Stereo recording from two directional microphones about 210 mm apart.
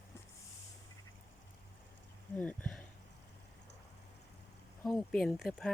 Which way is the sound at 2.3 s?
5° left (ahead or behind).